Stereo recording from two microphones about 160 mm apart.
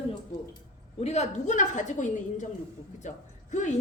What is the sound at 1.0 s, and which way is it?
A woman's voice, 45° left (ahead or behind).